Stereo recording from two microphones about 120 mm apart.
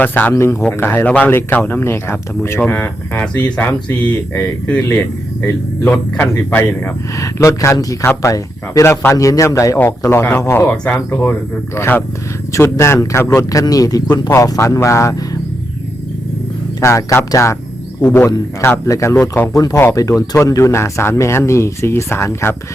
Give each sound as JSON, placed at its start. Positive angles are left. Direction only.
{"t": 0.0, "sound": "speech", "side_deg": 15}
{"t": 16.8, "sound": "speech", "side_deg": 25}
{"t": 18.6, "sound": "speech", "side_deg": 25}